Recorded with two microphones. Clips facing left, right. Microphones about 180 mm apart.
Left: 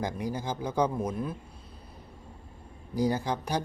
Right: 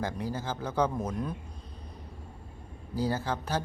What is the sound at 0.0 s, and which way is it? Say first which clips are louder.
Speech: left 1 dB; 15° left (ahead or behind).